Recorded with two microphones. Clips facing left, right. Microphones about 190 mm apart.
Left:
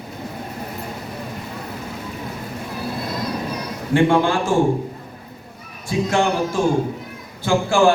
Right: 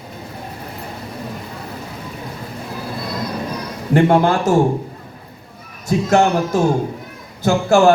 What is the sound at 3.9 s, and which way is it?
Speech, 40° right (ahead or behind).